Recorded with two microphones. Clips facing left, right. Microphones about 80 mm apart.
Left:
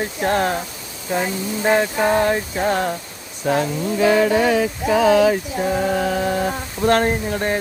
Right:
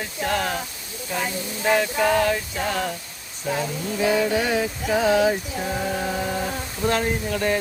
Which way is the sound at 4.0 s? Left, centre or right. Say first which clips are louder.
Left 5 dB; left.